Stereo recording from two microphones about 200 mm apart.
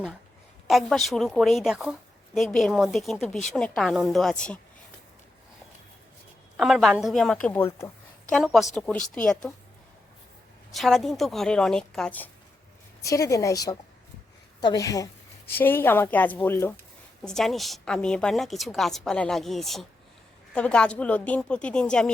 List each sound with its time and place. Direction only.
0.7 s a woman's voice: centre (ahead or behind)
6.6 s a woman's voice: centre (ahead or behind)
10.7 s a woman's voice: centre (ahead or behind)